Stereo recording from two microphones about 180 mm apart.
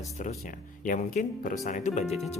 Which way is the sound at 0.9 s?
45° left (ahead or behind).